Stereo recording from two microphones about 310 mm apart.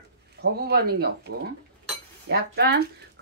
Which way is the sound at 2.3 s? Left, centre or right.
Right.